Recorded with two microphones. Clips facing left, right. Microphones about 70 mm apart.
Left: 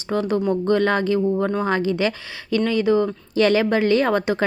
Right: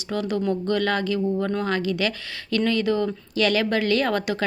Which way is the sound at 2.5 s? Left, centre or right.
Centre.